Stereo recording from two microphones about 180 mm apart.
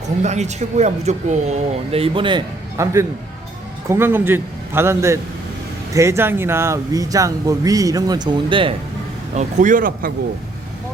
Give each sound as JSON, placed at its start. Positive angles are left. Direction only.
{"t": 0.2, "sound": "speech", "side_deg": -40}
{"t": 2.7, "sound": "a man's voice", "side_deg": -15}
{"t": 9.3, "sound": "speech", "side_deg": -40}